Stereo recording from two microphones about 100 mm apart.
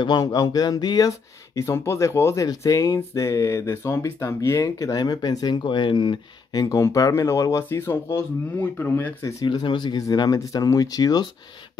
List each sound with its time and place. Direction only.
0.0 s speech: 40° left (ahead or behind)
6.6 s speech: 35° left (ahead or behind); by 9.1 s 20° left (ahead or behind)
9.5 s speech: 50° left (ahead or behind)